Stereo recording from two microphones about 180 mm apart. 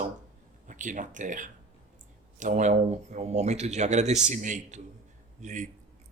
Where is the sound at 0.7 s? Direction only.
45° right (ahead or behind).